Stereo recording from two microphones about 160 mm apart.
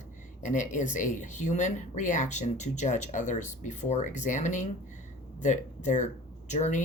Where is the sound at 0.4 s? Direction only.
50° left (ahead or behind).